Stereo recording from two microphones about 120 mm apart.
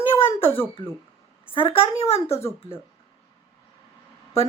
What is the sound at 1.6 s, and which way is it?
Speech, 60° left (ahead or behind).